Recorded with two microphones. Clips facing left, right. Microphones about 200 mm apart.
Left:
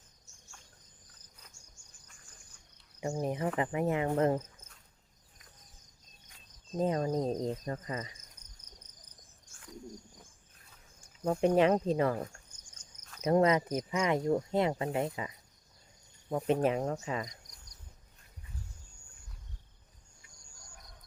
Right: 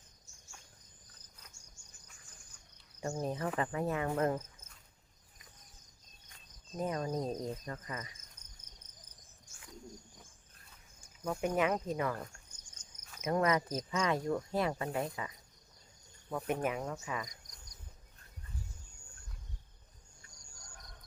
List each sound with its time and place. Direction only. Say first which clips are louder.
3.0 s speech: left 3 dB; 15° left (ahead or behind)
6.7 s speech: left 5 dB; 25° left (ahead or behind)
11.2 s speech: left 7 dB; 30° left (ahead or behind)
13.2 s speech: left 5 dB; 25° left (ahead or behind)
16.6 s speech: left 6 dB; 35° left (ahead or behind)